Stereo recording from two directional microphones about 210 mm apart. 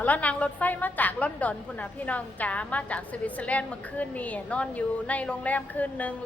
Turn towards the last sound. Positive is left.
turn(degrees=5)  # may be behind; listen again after turning